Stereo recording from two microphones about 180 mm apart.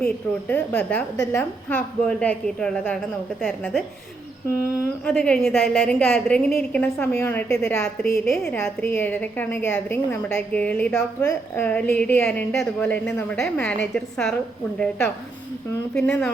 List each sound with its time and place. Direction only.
0.0 s a woman's voice: 10° left (ahead or behind)
1.1 s a woman's voice: 20° left (ahead or behind)
2.0 s a woman's voice: 5° left (ahead or behind)
8.2 s a woman's voice: centre (ahead or behind)